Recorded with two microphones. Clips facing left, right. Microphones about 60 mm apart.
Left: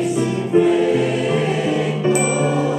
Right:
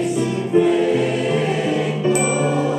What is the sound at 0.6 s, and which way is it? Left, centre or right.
Choir, centre.